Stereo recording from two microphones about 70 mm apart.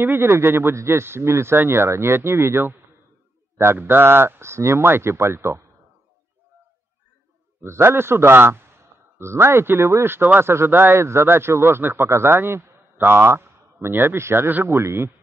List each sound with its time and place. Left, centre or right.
0.0 s speech: right
7.6 s speech: right